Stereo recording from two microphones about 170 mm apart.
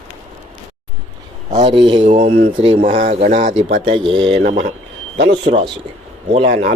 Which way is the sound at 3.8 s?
30° right (ahead or behind).